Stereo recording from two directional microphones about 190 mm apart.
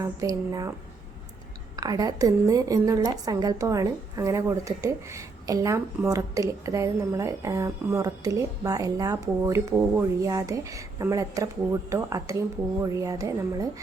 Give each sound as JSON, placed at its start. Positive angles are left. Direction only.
{"t": 0.0, "sound": "a woman's voice", "side_deg": -15}
{"t": 1.7, "sound": "a woman's voice", "side_deg": -20}